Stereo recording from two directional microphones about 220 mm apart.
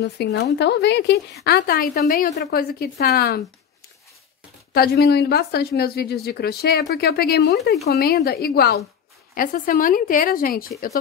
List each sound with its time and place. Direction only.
0.0 s a woman's voice: 50° left (ahead or behind)
4.7 s a woman's voice: 45° left (ahead or behind)